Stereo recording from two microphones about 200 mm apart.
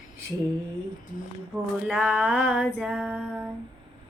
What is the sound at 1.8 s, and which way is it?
Female singing, 5° right (ahead or behind).